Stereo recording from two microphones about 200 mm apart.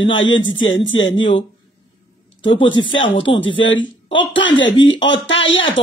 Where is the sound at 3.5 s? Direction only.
70° left (ahead or behind).